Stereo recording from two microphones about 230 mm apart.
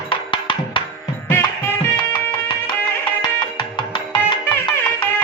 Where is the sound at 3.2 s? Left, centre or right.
Centre.